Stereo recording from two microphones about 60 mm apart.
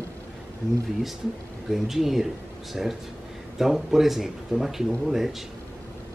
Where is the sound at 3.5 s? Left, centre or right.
Centre.